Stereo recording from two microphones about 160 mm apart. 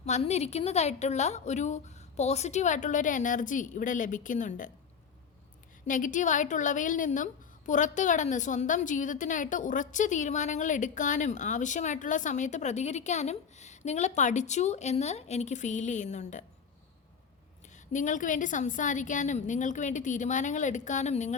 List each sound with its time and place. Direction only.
0.0 s a woman's voice: 45° left (ahead or behind)
5.9 s a woman's voice: 50° left (ahead or behind)
17.9 s a woman's voice: 50° left (ahead or behind)